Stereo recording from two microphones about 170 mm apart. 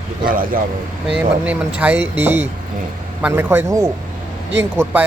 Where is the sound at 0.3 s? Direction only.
55° right (ahead or behind).